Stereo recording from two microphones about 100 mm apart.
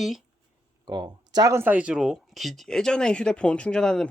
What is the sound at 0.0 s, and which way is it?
Speech, centre (ahead or behind).